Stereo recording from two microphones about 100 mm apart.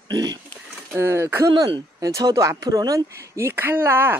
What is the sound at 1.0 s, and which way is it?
Speech, 25° right (ahead or behind).